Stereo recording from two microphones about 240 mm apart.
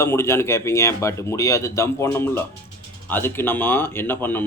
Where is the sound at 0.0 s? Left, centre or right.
Centre.